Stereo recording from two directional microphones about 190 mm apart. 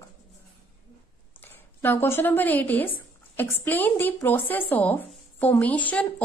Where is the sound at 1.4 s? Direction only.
10° left (ahead or behind).